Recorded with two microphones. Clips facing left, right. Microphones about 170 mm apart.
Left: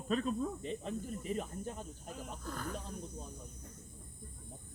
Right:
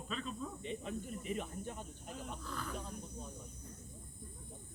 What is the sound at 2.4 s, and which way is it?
Speech, 45° left (ahead or behind).